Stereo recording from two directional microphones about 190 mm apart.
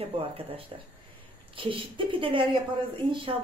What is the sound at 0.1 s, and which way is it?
Speech, 30° right (ahead or behind).